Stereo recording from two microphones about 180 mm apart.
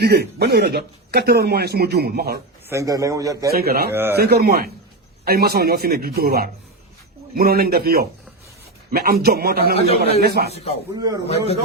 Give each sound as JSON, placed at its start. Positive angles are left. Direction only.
{"t": 0.0, "sound": "a man's voice", "side_deg": -65}
{"t": 2.6, "sound": "a man's voice", "side_deg": -20}
{"t": 3.5, "sound": "a man's voice", "side_deg": -60}
{"t": 9.7, "sound": "a man's voice", "side_deg": 35}
{"t": 10.2, "sound": "a man's voice", "side_deg": -60}
{"t": 10.5, "sound": "a man's voice", "side_deg": 35}
{"t": 10.9, "sound": "a man's voice", "side_deg": -20}